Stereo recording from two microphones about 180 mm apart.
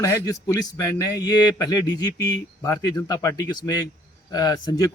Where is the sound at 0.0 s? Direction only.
20° left (ahead or behind).